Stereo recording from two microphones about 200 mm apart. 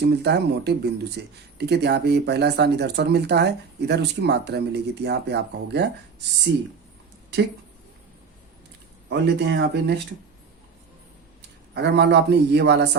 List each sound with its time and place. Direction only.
0.0 s speech: 55° right (ahead or behind)
9.0 s speech: 65° right (ahead or behind)
11.7 s speech: 55° right (ahead or behind)